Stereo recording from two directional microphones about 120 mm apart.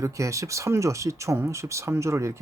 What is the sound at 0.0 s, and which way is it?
Speech, 25° right (ahead or behind).